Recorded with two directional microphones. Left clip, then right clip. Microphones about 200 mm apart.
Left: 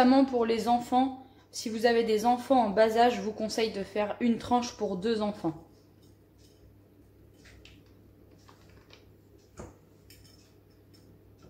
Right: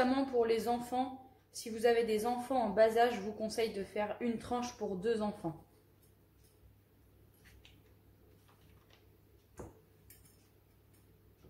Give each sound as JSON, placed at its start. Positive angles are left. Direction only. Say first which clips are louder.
{"t": 0.0, "sound": "a woman's voice", "louder": "left 8 dB", "side_deg": 35}